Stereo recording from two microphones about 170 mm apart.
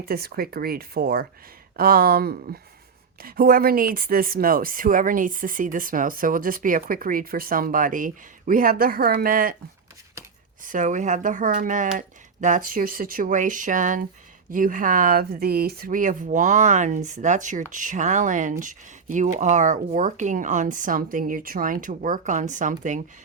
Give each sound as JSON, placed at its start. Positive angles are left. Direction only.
{"t": 0.0, "sound": "speech", "side_deg": -65}
{"t": 10.6, "sound": "speech", "side_deg": -50}